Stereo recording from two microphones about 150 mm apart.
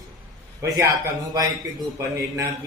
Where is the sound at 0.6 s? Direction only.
20° right (ahead or behind).